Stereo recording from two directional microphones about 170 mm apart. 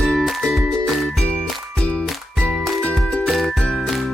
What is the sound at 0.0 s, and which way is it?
Music, centre (ahead or behind).